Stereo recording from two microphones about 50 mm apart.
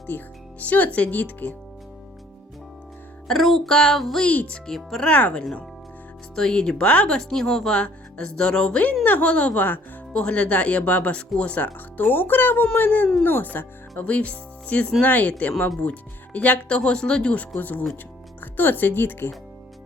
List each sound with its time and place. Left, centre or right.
0.1 s speech: left
0.6 s speech: left
3.2 s music: centre
4.3 s speech: left
4.6 s music: centre
5.0 s speech: left
6.3 s music: centre
7.2 s music: centre
7.7 s speech: centre
9.0 s speech: left
10.1 s speech: left
14.0 s speech: left
17.6 s speech: left